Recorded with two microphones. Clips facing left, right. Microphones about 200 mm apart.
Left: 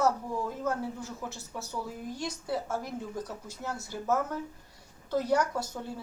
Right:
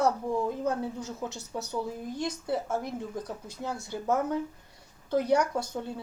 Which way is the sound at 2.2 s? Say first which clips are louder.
Right 3 dB; 55° right (ahead or behind).